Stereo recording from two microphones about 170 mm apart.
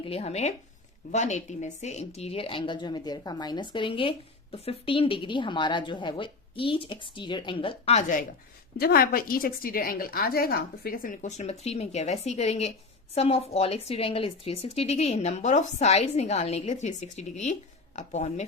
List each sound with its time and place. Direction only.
0.0 s a woman's voice: 35° left (ahead or behind)
8.8 s a woman's voice: 65° left (ahead or behind); by 18.4 s 40° left (ahead or behind)